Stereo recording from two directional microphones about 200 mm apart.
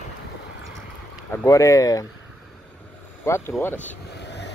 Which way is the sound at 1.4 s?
15° left (ahead or behind).